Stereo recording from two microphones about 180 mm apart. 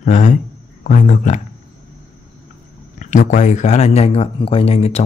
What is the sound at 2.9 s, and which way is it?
Speech, 45° left (ahead or behind).